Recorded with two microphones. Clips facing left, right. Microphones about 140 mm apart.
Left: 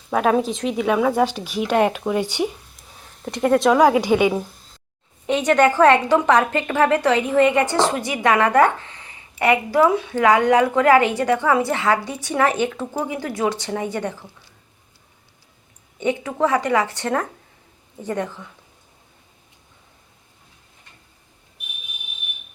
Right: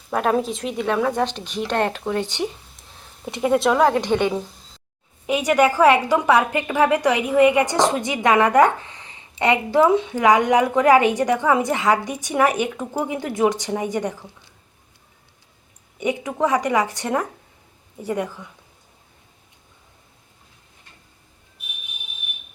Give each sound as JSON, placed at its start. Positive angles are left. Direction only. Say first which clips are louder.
{"t": 0.1, "sound": "speech", "louder": "left 2 dB", "side_deg": 0}
{"t": 3.2, "sound": "a woman's voice", "louder": "left 2 dB", "side_deg": -5}
{"t": 5.2, "sound": "a woman's voice", "louder": "left 1 dB", "side_deg": -10}
{"t": 16.0, "sound": "a woman's voice", "louder": "left 1 dB", "side_deg": -15}